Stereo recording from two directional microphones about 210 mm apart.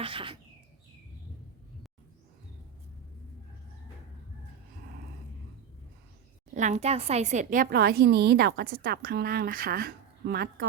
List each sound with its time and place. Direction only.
0.0 s speech: 25° right (ahead or behind)
6.5 s a woman's voice: 35° right (ahead or behind); by 10.7 s 50° right (ahead or behind)